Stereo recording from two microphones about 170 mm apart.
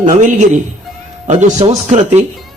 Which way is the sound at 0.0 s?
45° right (ahead or behind).